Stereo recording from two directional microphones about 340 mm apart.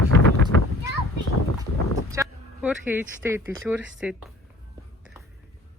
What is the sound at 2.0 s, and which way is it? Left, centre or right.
Speech, centre.